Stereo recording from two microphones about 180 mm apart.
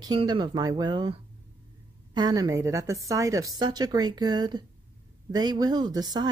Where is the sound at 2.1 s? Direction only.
20° right (ahead or behind).